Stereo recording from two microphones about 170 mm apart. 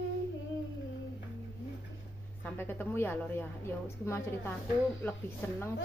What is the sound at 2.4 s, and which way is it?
A woman's voice, 15° left (ahead or behind).